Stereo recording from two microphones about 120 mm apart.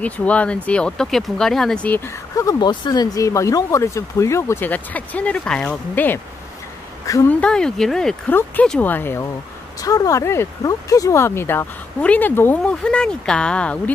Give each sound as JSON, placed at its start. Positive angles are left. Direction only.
{"t": 0.0, "sound": "speech", "side_deg": 10}
{"t": 2.3, "sound": "speech", "side_deg": 35}
{"t": 7.2, "sound": "speech", "side_deg": 10}
{"t": 8.3, "sound": "speech", "side_deg": 15}